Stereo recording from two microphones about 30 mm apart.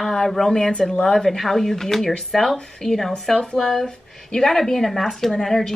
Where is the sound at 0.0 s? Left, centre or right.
Centre.